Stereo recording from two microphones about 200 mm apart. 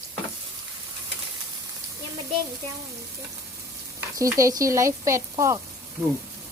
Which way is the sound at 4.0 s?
15° right (ahead or behind).